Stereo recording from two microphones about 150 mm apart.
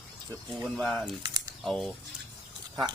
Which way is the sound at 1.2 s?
25° right (ahead or behind).